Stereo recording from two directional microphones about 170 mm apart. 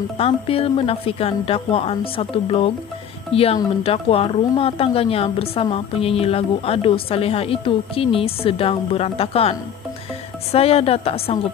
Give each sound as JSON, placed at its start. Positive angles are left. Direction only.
{"t": 0.2, "sound": "a woman's voice", "side_deg": 35}